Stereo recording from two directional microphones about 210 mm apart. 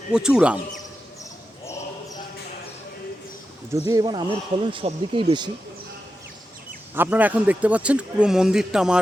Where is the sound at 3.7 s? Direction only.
15° right (ahead or behind).